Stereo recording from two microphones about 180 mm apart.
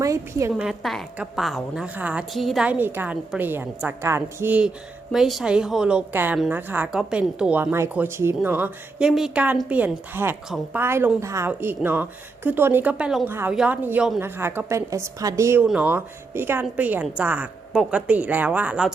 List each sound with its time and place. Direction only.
0.0 s a woman's voice: 15° right (ahead or behind)
0.5 s a woman's voice: 5° right (ahead or behind)